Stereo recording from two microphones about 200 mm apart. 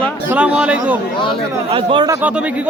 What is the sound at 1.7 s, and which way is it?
Speech, 25° right (ahead or behind).